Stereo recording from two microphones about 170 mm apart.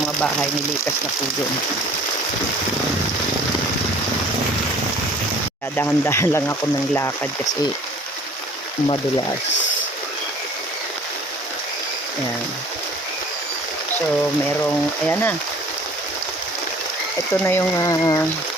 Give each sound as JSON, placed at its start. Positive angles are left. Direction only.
{"t": 5.7, "sound": "speech", "side_deg": 15}
{"t": 14.6, "sound": "speech", "side_deg": 10}
{"t": 17.4, "sound": "speech", "side_deg": 15}